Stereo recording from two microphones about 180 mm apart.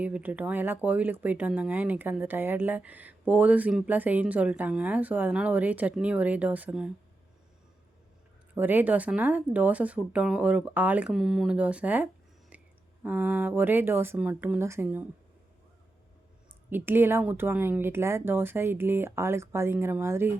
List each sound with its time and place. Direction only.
0.0 s speech: 10° right (ahead or behind)
8.5 s speech: 10° right (ahead or behind)
12.5 s a sound: 10° right (ahead or behind)
13.0 s speech: 10° right (ahead or behind)
16.6 s speech: 10° right (ahead or behind)